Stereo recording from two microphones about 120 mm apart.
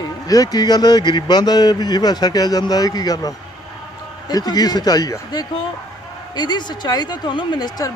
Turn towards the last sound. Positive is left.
turn(degrees=35)  # may be behind; listen again after turning